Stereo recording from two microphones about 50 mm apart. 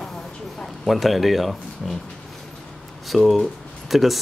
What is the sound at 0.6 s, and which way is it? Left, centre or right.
Speech, centre.